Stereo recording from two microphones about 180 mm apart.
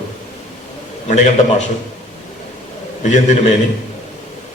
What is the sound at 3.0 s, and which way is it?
Speech, 40° left (ahead or behind).